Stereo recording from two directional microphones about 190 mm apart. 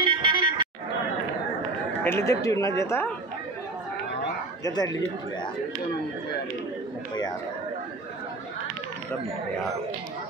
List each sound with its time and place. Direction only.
0.0 s music: 25° right (ahead or behind)
2.0 s speech: 15° left (ahead or behind)
4.6 s speech: 20° left (ahead or behind)